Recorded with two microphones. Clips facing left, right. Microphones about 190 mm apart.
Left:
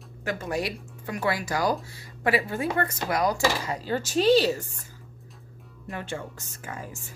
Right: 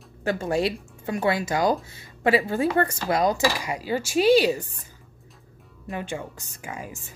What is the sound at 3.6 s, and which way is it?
Speech, 10° right (ahead or behind).